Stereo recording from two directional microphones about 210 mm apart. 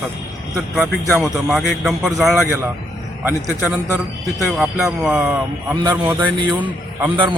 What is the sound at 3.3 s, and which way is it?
Speech, 10° right (ahead or behind).